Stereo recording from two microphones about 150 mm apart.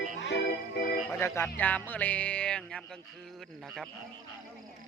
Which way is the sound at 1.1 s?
15° left (ahead or behind).